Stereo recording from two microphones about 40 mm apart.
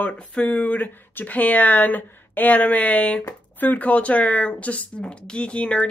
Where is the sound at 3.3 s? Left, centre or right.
Left.